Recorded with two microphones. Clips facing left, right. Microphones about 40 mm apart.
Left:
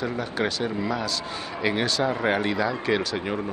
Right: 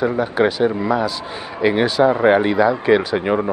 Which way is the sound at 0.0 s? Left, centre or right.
Centre.